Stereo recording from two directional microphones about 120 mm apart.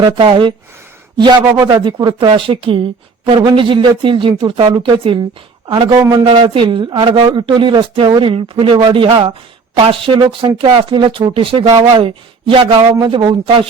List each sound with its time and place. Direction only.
0.0 s speech: 45° right (ahead or behind)
2.1 s speech: 45° right (ahead or behind); by 6.2 s 30° right (ahead or behind)
6.2 s speech: 45° right (ahead or behind)